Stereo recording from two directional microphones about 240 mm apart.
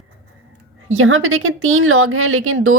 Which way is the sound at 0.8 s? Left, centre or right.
Right.